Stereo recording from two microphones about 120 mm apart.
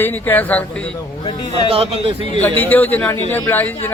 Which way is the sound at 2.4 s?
15° left (ahead or behind).